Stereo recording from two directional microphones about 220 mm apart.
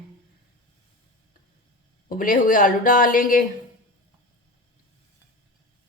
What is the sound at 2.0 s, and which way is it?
A woman's voice, 40° left (ahead or behind).